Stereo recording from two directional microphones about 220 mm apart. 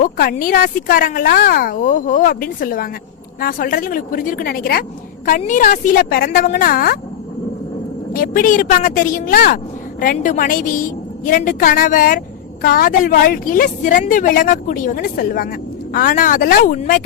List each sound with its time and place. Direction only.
0.0 s speech: 40° left (ahead or behind)
8.1 s speech: 40° left (ahead or behind)